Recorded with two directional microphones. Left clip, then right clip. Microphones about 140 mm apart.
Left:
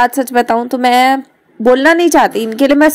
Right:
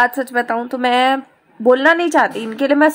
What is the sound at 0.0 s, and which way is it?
Speech, 25° left (ahead or behind).